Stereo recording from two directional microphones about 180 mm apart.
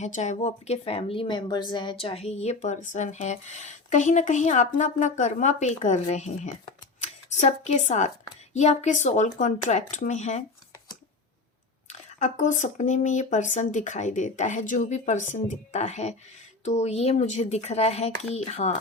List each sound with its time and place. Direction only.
0.0 s a woman's voice: 40° left (ahead or behind)
11.9 s a woman's voice: 45° left (ahead or behind)